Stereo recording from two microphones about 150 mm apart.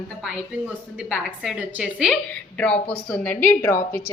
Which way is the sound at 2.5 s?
10° left (ahead or behind).